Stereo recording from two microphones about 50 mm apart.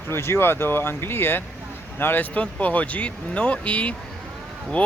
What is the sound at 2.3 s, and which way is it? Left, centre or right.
Speech, left.